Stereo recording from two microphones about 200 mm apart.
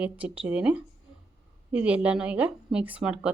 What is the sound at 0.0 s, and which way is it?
Speech, 5° right (ahead or behind).